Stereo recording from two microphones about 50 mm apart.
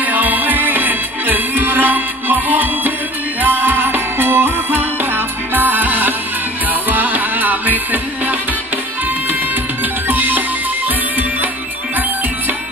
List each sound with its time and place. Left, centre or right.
0.0 s music: right
10.0 s music: right